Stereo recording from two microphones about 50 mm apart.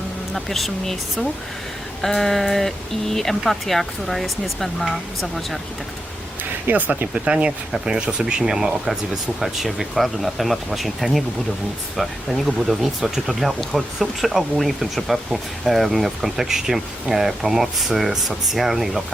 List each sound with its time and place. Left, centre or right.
0.3 s speech: centre
6.7 s speech: right
7.1 s speech: right; by 19.0 s centre